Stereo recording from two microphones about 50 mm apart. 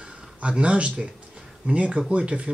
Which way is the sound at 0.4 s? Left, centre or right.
Right.